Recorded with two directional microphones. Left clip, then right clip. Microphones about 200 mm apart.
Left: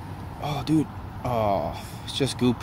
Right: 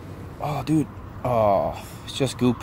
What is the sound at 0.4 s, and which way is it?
Speech, 35° right (ahead or behind).